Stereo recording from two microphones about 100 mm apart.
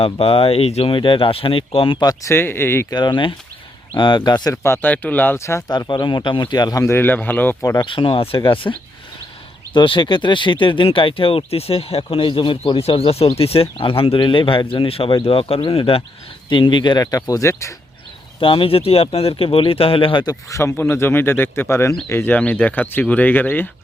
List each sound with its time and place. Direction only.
0.0 s speech: 70° left (ahead or behind); by 0.9 s 85° left
0.9 s speech: 55° left (ahead or behind)
2.0 s speech: 40° left (ahead or behind)
2.3 s speech: 20° left (ahead or behind)
2.9 s speech: 50° left (ahead or behind)
4.6 s speech: 20° left (ahead or behind)
5.6 s speech: 45° left (ahead or behind)
6.8 s speech: 20° left (ahead or behind)
7.8 s speech: 60° left (ahead or behind); by 12.0 s 80° left
12.1 s speech: 55° left (ahead or behind)
16.5 s speech: 55° left (ahead or behind); by 17.7 s 30° left (ahead or behind)
18.3 s speech: 60° left (ahead or behind)
20.2 s speech: 30° left (ahead or behind)